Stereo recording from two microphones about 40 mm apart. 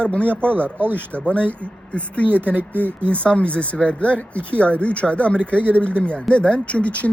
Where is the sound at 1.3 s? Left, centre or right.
Left.